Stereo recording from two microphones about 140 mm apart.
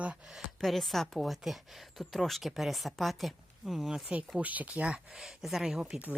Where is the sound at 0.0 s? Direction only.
10° right (ahead or behind).